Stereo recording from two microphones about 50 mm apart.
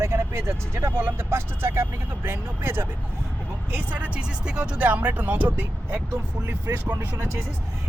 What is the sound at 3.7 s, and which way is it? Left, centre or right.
Speech, right.